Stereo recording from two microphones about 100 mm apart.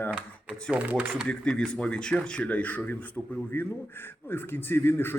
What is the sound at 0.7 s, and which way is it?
Speech, 15° right (ahead or behind).